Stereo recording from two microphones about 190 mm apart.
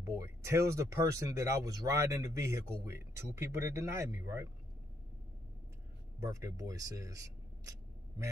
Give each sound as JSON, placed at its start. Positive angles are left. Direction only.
{"t": 0.0, "sound": "speech", "side_deg": -15}
{"t": 6.1, "sound": "speech", "side_deg": -15}